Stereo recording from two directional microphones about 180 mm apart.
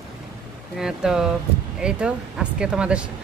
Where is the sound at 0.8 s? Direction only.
5° right (ahead or behind).